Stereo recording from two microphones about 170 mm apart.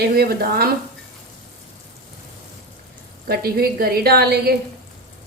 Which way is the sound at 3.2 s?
65° right (ahead or behind).